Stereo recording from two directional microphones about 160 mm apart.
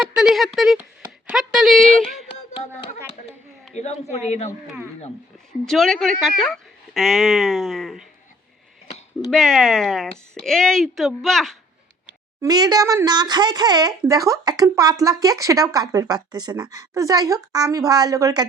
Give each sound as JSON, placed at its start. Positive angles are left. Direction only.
{"t": 0.0, "sound": "speech", "side_deg": -5}
{"t": 2.5, "sound": "speech", "side_deg": 35}
{"t": 3.7, "sound": "speech", "side_deg": 45}
{"t": 5.6, "sound": "speech", "side_deg": 0}
{"t": 9.3, "sound": "speech", "side_deg": 5}
{"t": 12.4, "sound": "speech", "side_deg": -25}